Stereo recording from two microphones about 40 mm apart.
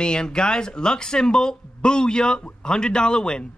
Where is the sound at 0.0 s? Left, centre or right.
Left.